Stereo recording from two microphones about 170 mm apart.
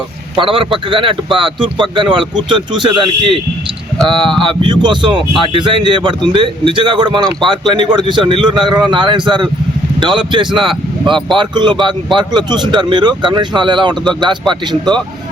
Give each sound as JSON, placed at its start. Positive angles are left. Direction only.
{"t": 0.3, "sound": "a man's voice", "side_deg": -30}
{"t": 4.8, "sound": "a man's voice", "side_deg": -25}